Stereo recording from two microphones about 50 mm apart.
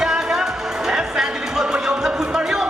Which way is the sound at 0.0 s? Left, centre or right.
Centre.